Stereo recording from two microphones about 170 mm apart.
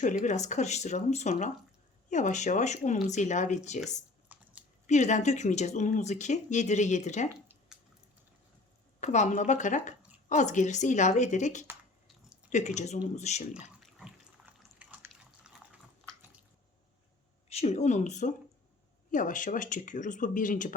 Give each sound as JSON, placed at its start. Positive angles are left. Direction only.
{"t": 0.0, "sound": "speech", "side_deg": 45}
{"t": 4.3, "sound": "a sound", "side_deg": -10}
{"t": 4.9, "sound": "speech", "side_deg": 45}
{"t": 9.0, "sound": "speech", "side_deg": 45}
{"t": 14.8, "sound": "water", "side_deg": -10}
{"t": 17.5, "sound": "speech", "side_deg": 40}